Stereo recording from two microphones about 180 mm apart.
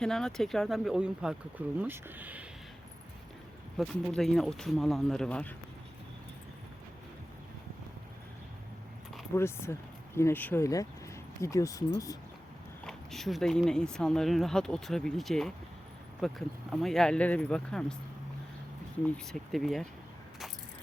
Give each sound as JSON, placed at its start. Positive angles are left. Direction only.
{"t": 0.0, "sound": "speech", "side_deg": 5}
{"t": 3.8, "sound": "speech", "side_deg": 0}
{"t": 9.3, "sound": "speech", "side_deg": 15}
{"t": 12.8, "sound": "speech", "side_deg": 0}
{"t": 19.0, "sound": "speech", "side_deg": 5}